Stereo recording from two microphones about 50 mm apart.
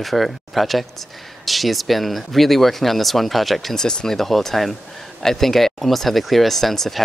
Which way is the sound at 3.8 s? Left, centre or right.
Centre.